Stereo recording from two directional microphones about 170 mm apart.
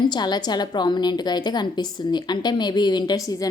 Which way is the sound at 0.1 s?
25° left (ahead or behind).